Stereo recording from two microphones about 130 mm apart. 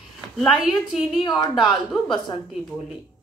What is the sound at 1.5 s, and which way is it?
Speech, centre (ahead or behind).